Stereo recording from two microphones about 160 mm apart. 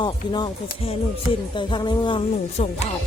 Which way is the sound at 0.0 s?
25° left (ahead or behind).